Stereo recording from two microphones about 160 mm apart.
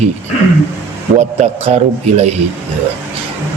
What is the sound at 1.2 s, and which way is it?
Speech, 45° right (ahead or behind).